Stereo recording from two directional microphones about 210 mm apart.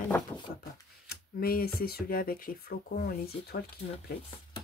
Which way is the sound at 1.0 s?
45° left (ahead or behind).